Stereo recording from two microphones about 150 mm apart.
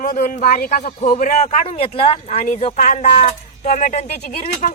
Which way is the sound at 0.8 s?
55° left (ahead or behind).